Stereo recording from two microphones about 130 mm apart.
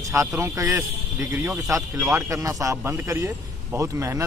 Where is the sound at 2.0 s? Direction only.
20° right (ahead or behind).